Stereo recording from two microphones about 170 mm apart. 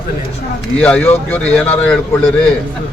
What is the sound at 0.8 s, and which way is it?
Speech, 10° left (ahead or behind).